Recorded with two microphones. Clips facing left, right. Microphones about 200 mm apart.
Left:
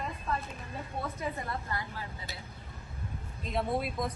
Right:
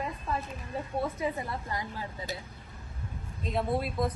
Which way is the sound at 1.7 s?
15° right (ahead or behind).